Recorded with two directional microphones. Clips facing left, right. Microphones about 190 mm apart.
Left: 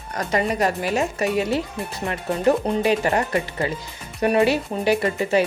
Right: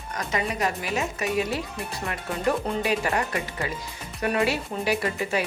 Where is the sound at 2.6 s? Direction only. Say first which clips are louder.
Left 5 dB; 25° left (ahead or behind).